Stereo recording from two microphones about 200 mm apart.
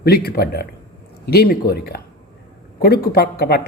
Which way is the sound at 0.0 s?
50° left (ahead or behind).